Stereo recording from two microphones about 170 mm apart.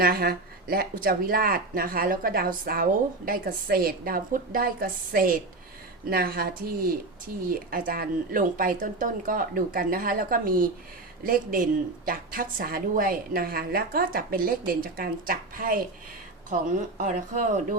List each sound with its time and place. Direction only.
0.0 s speech: 60° right (ahead or behind)